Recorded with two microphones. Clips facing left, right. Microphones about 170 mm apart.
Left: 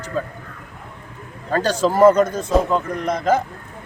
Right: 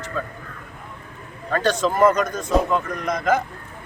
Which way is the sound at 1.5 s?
30° left (ahead or behind).